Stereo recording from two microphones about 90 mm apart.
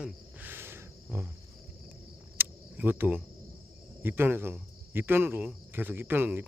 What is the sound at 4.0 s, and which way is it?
Speech, 25° right (ahead or behind).